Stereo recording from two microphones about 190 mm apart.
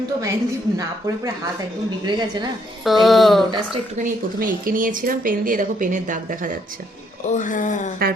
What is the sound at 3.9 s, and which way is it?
Speech, 45° right (ahead or behind).